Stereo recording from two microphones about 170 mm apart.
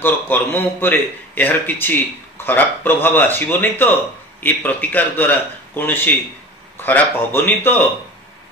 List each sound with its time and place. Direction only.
0.0 s a man's voice: 10° left (ahead or behind)